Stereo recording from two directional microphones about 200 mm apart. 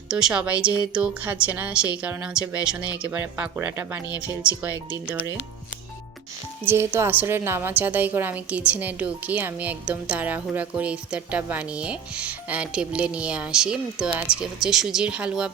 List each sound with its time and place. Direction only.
0.1 s a woman's voice: 5° right (ahead or behind)
6.7 s a woman's voice: 10° right (ahead or behind)